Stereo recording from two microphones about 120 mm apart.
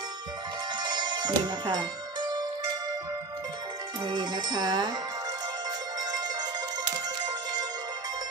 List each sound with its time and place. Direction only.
0.7 s music: 35° right (ahead or behind)
4.0 s music: 40° right (ahead or behind)